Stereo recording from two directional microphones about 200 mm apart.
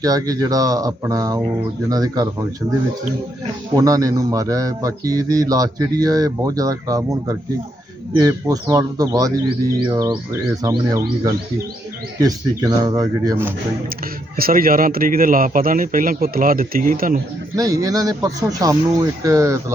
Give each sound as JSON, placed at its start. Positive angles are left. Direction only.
{"t": 0.0, "sound": "a man's voice", "side_deg": -15}
{"t": 3.8, "sound": "a man's voice", "side_deg": -15}
{"t": 14.3, "sound": "a man's voice", "side_deg": -45}
{"t": 17.6, "sound": "a man's voice", "side_deg": -15}